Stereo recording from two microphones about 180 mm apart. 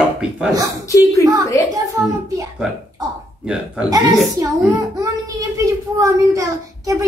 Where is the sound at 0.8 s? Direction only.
15° left (ahead or behind).